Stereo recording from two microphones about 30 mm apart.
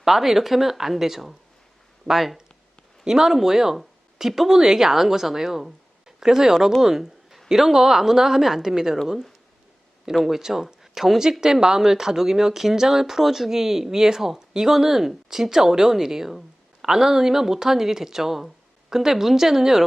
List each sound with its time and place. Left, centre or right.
0.0 s speech: centre
3.0 s speech: centre
10.2 s speech: centre